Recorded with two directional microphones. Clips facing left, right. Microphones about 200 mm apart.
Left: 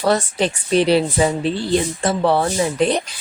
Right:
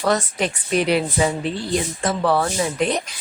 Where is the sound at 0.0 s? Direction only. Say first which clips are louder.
Left 3 dB; 30° left (ahead or behind).